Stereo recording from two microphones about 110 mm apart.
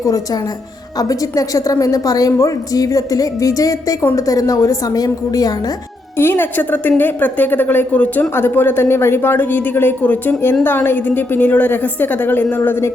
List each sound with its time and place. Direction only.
0.9 s a woman's voice: 30° left (ahead or behind)
6.1 s a woman's voice: 20° left (ahead or behind)